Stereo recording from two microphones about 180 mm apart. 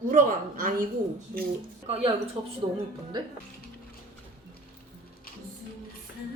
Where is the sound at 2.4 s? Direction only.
30° right (ahead or behind).